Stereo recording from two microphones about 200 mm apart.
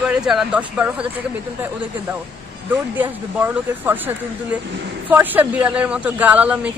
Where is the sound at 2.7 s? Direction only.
10° right (ahead or behind).